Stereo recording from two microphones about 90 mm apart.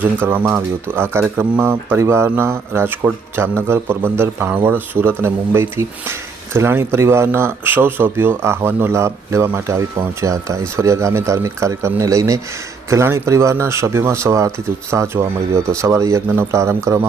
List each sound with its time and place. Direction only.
0.0 s speech: 20° right (ahead or behind)